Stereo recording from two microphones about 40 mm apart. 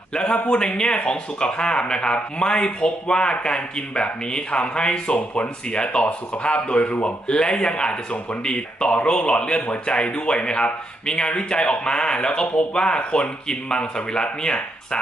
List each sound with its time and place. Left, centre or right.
0.1 s a man's voice: left